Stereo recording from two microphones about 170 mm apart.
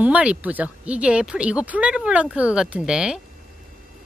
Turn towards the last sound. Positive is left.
turn(degrees=-5)  # may be behind; listen again after turning